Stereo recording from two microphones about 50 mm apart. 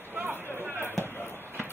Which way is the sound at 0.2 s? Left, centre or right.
Right.